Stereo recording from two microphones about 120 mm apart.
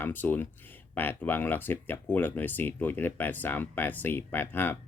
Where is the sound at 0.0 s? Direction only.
15° left (ahead or behind).